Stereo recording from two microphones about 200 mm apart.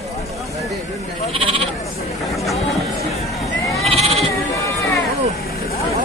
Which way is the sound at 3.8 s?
30° right (ahead or behind).